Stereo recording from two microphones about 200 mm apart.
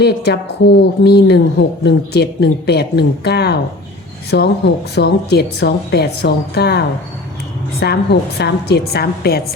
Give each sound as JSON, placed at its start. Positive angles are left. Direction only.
{"t": 0.0, "sound": "a woman's voice", "side_deg": 55}